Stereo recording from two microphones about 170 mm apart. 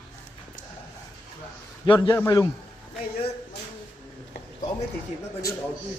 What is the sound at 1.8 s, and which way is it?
Speech, 25° left (ahead or behind).